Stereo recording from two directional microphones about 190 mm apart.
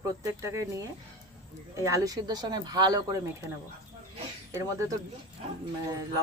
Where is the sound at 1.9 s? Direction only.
20° right (ahead or behind).